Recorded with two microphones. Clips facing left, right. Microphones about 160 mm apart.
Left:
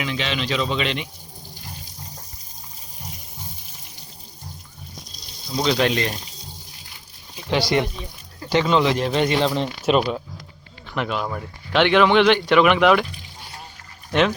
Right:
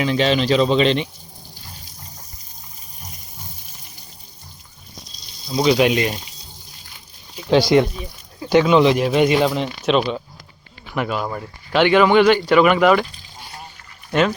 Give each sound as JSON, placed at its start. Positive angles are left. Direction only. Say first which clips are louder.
{"t": 0.0, "sound": "a man's voice", "louder": "right 8 dB", "side_deg": -40}
{"t": 5.5, "sound": "speech", "louder": "right 4 dB", "side_deg": -10}
{"t": 7.5, "sound": "speech", "louder": "right 6 dB", "side_deg": -15}
{"t": 14.1, "sound": "speech", "louder": "right 1 dB", "side_deg": 0}